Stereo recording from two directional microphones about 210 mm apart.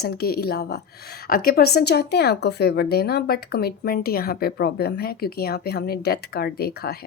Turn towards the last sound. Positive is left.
turn(degrees=50)  # may be behind; listen again after turning